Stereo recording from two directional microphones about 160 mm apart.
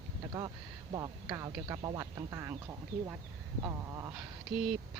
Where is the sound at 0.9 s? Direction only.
25° right (ahead or behind).